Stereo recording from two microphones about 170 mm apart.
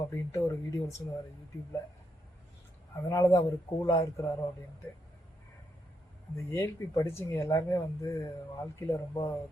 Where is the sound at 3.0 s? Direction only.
20° left (ahead or behind).